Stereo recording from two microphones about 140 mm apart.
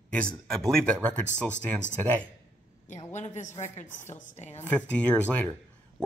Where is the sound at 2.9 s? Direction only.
60° left (ahead or behind).